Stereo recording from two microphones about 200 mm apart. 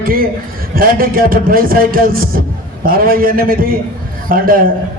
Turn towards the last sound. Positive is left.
turn(degrees=-45)  # may be behind; listen again after turning